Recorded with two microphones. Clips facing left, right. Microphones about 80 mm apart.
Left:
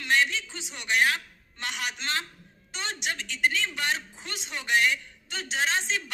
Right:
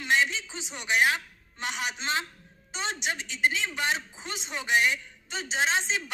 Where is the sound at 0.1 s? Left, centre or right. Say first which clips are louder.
Even; right.